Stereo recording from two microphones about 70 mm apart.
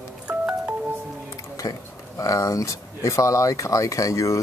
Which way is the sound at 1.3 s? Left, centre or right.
Left.